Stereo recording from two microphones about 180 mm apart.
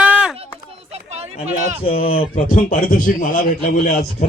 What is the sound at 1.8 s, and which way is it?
Speech, 30° left (ahead or behind).